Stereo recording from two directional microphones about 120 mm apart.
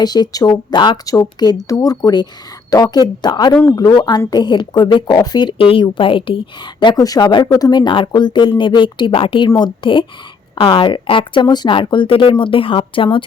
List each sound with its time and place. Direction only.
0.0 s a woman's voice: 35° left (ahead or behind)
1.0 s a woman's voice: 30° left (ahead or behind)
3.5 s speech: 20° left (ahead or behind)
3.8 s a woman's voice: 30° left (ahead or behind)